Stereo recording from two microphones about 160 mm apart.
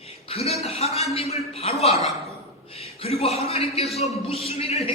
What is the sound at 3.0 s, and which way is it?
A man's voice, 40° left (ahead or behind).